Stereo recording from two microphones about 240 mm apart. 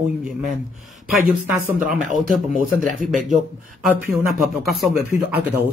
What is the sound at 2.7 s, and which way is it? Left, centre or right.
Speech, right.